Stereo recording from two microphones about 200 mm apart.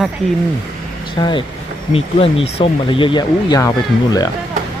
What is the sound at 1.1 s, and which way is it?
Speech, 20° left (ahead or behind).